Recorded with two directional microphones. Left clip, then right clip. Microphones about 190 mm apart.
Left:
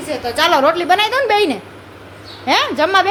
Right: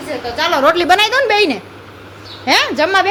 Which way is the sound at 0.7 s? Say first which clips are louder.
Right 3 dB; 15° right (ahead or behind).